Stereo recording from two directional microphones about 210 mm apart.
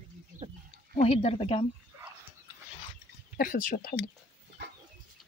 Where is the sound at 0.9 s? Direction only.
30° left (ahead or behind).